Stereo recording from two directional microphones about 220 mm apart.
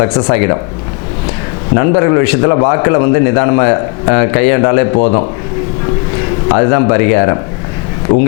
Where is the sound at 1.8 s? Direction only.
20° left (ahead or behind).